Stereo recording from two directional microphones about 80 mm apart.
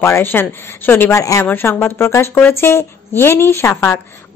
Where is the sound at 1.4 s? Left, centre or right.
Left.